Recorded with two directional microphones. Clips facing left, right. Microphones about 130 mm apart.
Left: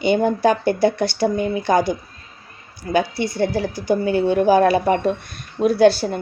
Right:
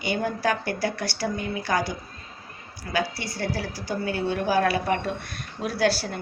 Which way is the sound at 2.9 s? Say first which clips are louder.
Left 8 dB; 25° left (ahead or behind).